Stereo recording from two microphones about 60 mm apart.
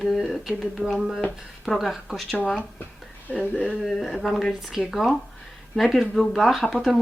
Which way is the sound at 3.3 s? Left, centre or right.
Centre.